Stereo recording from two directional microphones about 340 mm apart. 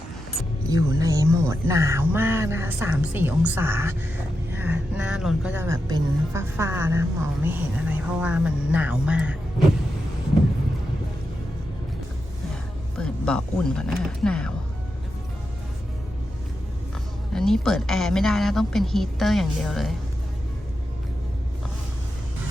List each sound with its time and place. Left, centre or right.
0.7 s a woman's voice: centre
13.0 s a woman's voice: centre
17.3 s a woman's voice: centre